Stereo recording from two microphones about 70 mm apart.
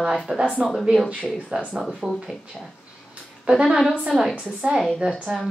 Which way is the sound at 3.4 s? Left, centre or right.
Centre.